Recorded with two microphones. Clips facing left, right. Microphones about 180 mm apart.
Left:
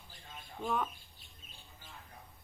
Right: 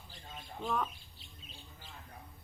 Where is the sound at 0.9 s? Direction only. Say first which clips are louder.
Right 2 dB; 50° left (ahead or behind).